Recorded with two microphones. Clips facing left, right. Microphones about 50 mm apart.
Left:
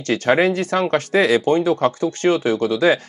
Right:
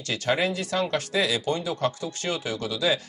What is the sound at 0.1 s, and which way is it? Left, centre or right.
Speech, left.